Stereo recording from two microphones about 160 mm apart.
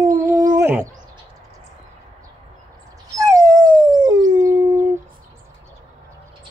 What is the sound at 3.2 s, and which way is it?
Dog, 20° right (ahead or behind).